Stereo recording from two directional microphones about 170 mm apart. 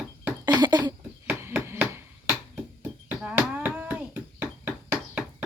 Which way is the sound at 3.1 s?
10° right (ahead or behind).